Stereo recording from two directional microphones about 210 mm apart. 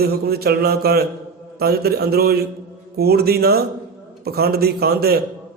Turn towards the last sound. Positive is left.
turn(degrees=-50)  # may be behind; listen again after turning